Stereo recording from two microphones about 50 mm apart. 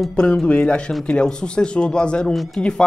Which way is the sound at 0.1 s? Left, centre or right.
Centre.